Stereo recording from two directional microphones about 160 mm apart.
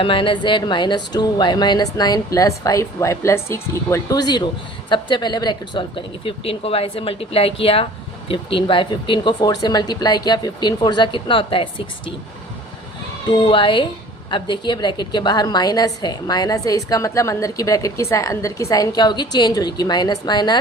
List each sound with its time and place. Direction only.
0.0 s a woman's voice: 30° left (ahead or behind)
6.2 s a woman's voice: 35° left (ahead or behind)
13.2 s a woman's voice: 30° left (ahead or behind)